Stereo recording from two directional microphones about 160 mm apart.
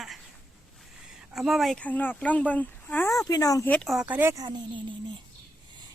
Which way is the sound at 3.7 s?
Centre (ahead or behind).